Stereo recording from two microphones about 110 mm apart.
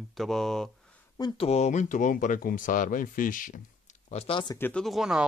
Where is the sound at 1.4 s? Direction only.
80° left.